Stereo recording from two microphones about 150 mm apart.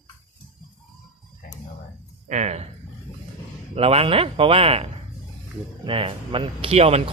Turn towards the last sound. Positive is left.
turn(degrees=-40)  # may be behind; listen again after turning